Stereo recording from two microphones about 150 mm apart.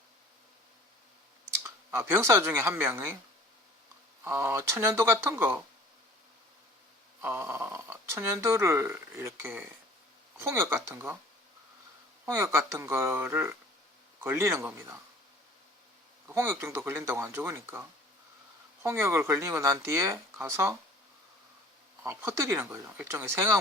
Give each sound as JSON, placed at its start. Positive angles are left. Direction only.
{"t": 1.6, "sound": "speech", "side_deg": -15}
{"t": 4.2, "sound": "speech", "side_deg": -15}
{"t": 7.2, "sound": "speech", "side_deg": -15}
{"t": 12.2, "sound": "speech", "side_deg": -15}
{"t": 16.3, "sound": "speech", "side_deg": -15}
{"t": 22.0, "sound": "speech", "side_deg": -20}